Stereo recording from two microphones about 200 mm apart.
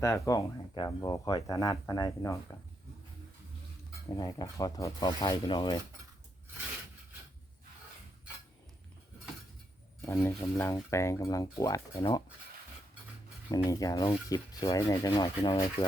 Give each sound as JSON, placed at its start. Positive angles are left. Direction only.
{"t": 0.0, "sound": "speech", "side_deg": 15}
{"t": 4.1, "sound": "rub", "side_deg": 15}
{"t": 10.0, "sound": "speech", "side_deg": 10}
{"t": 13.5, "sound": "speech", "side_deg": 15}